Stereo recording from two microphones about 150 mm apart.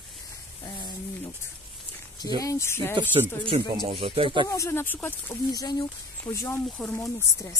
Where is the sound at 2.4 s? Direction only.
20° left (ahead or behind).